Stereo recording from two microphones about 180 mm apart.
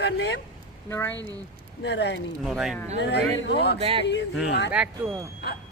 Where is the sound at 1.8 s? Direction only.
75° left (ahead or behind).